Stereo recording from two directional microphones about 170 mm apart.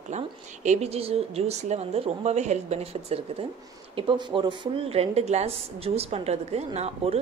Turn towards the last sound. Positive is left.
turn(degrees=-40)  # may be behind; listen again after turning